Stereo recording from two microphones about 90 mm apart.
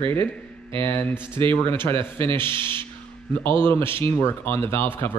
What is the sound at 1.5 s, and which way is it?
Speech, 25° left (ahead or behind).